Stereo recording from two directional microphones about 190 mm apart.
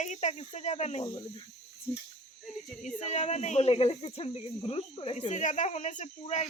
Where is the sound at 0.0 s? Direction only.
40° left (ahead or behind).